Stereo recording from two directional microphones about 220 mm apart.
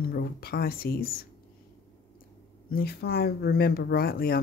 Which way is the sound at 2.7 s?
45° left (ahead or behind).